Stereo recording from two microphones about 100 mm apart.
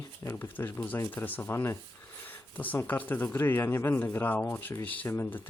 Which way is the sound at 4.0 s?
15° left (ahead or behind).